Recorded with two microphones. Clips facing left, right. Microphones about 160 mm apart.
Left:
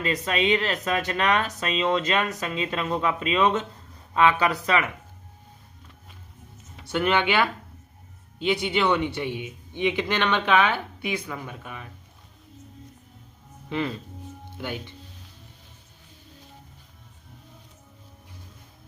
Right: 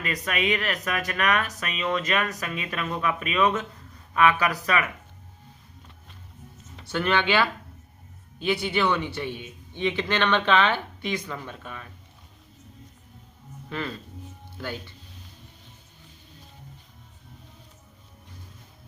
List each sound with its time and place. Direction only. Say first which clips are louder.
0.0 s speech: left 3 dB; 25° left (ahead or behind)
6.9 s speech: left 1 dB; 15° left (ahead or behind)
8.6 s speech: left 3 dB; 15° left (ahead or behind)
13.7 s speech: left 4 dB; 20° left (ahead or behind)